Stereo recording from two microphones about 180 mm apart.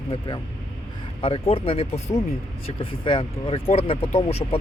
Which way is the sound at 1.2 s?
30° left (ahead or behind).